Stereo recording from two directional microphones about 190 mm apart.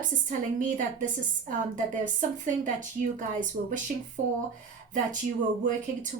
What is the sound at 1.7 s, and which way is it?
A woman's voice, 40° right (ahead or behind).